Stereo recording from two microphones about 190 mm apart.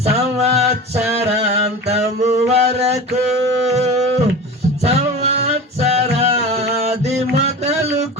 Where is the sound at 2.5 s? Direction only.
35° right (ahead or behind).